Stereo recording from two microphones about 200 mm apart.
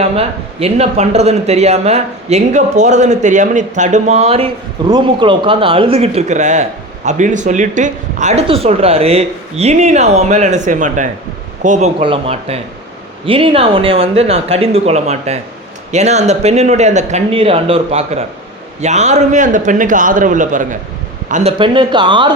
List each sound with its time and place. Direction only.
0.0 s a man's voice: 30° right (ahead or behind)
21.6 s speech: 25° right (ahead or behind)